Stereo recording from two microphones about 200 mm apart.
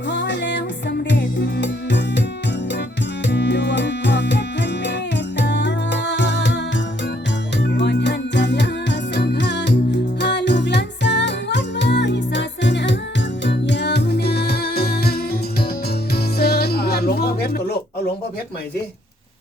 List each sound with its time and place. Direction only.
0.1 s music: 60° left (ahead or behind)
3.2 s music: 60° left (ahead or behind)
7.6 s music: 60° left (ahead or behind)